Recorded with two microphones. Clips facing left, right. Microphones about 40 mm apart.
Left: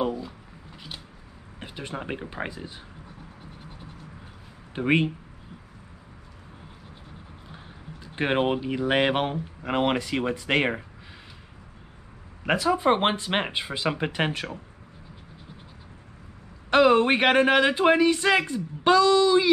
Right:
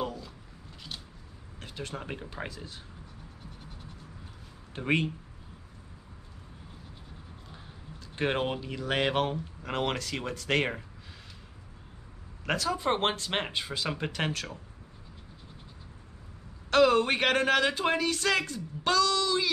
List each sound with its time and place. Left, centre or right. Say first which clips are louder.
0.0 s a sound: left 7 dB; centre
1.6 s speech: left 4 dB; left
4.7 s speech: left 6 dB; centre
7.5 s speech: left 6 dB; left
12.4 s speech: left 7 dB; centre
16.7 s speech: left 4 dB; left